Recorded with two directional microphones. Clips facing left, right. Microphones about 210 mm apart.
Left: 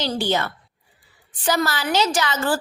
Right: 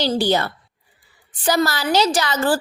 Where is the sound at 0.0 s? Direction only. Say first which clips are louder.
Right 4 dB; 35° right (ahead or behind).